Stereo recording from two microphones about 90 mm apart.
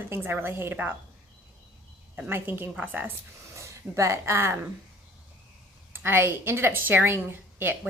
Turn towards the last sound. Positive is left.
turn(degrees=-25)  # may be behind; listen again after turning